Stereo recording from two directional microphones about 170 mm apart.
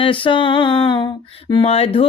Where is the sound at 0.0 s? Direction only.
30° left (ahead or behind).